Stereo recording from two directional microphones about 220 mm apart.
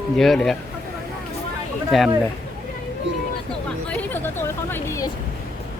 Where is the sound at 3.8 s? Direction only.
10° left (ahead or behind).